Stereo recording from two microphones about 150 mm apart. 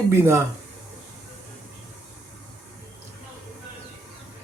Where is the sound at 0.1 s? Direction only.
20° right (ahead or behind).